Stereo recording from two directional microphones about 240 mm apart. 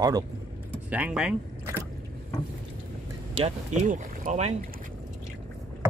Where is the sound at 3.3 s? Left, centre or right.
Right.